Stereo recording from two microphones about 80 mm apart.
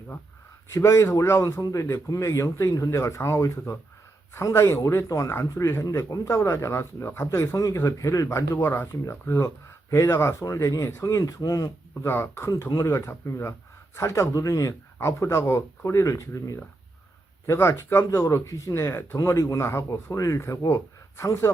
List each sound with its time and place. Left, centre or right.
0.7 s speech: left
7.5 s speech: left
10.4 s speech: left
12.0 s speech: left
14.9 s speech: left
20.4 s speech: left